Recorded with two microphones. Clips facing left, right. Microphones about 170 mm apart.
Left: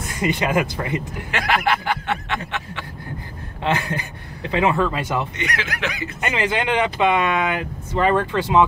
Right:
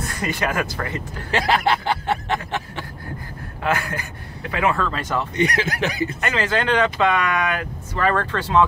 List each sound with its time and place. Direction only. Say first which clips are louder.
0.0 s speech: left 2 dB; 20° left (ahead or behind)
1.3 s snicker: right 2 dB; 30° right (ahead or behind)
3.6 s speech: left 1 dB; 25° left (ahead or behind)
5.3 s snicker: right 6 dB; 35° right (ahead or behind)
6.2 s speech: left 1 dB; 15° left (ahead or behind)